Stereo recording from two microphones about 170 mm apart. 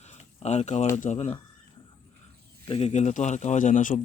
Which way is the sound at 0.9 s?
45° left (ahead or behind).